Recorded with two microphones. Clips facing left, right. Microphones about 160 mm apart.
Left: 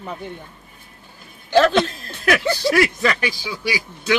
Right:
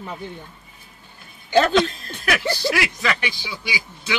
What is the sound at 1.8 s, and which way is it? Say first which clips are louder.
Speech: even; 40° left (ahead or behind).